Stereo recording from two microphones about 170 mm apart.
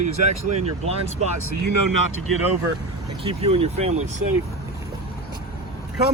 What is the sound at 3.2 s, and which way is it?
Speech, 35° right (ahead or behind).